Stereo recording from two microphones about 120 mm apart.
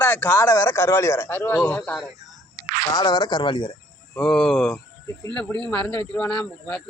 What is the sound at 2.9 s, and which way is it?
Speech, 35° left (ahead or behind).